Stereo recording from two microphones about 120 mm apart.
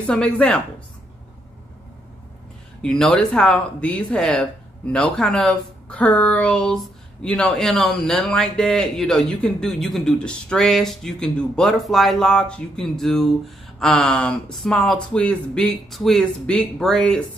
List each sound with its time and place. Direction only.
0.0 s speech: 10° left (ahead or behind)
2.8 s a woman's voice: 5° left (ahead or behind)